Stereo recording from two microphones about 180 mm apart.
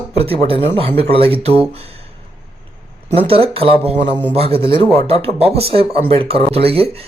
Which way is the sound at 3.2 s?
30° right (ahead or behind).